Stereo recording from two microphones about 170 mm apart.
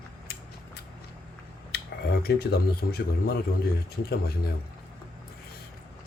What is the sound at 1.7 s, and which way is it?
Speech, 70° left (ahead or behind).